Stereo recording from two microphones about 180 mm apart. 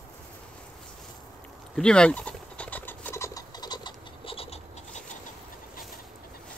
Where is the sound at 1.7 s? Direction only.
5° left (ahead or behind); by 5.0 s 35° left (ahead or behind).